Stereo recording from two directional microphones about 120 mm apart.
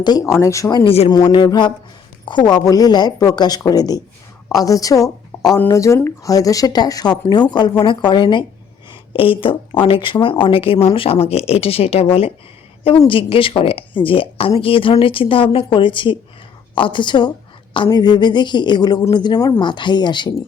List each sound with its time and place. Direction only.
0.0 s a woman's voice: 35° left (ahead or behind)
0.9 s speech: 50° left (ahead or behind)
1.1 s a woman's voice: 40° left (ahead or behind)